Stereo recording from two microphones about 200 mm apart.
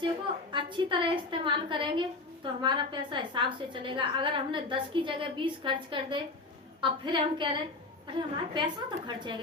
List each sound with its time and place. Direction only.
0.5 s a woman's voice: 25° right (ahead or behind)